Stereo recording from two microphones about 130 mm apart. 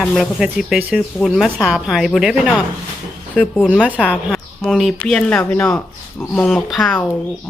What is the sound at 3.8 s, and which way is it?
Speech, 10° right (ahead or behind).